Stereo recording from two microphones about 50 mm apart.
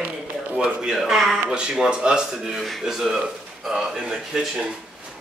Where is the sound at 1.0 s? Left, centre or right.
Centre.